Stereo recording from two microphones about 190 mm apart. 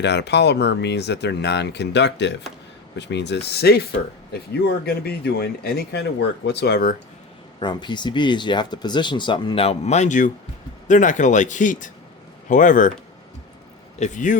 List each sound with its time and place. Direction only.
0.0 s speech: 60° left (ahead or behind)
7.6 s speech: 25° left (ahead or behind); by 12.9 s 45° left (ahead or behind)
14.0 s speech: 40° left (ahead or behind)